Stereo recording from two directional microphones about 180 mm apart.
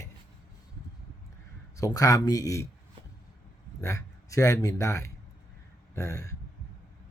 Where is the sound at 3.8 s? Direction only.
15° left (ahead or behind).